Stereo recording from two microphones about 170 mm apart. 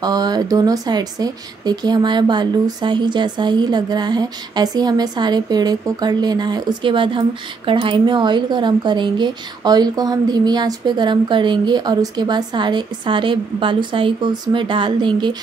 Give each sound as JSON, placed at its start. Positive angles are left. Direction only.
{"t": 0.0, "sound": "speech", "side_deg": -25}